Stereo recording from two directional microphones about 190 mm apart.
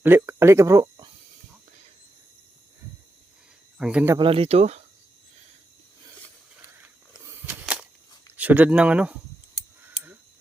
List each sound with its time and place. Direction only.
0.0 s speech: 10° right (ahead or behind)
3.8 s speech: 5° right (ahead or behind)
4.2 s speech: 30° right (ahead or behind)
7.3 s a sound: 10° right (ahead or behind)
8.4 s speech: 10° right (ahead or behind)
9.9 s a sound: 10° right (ahead or behind)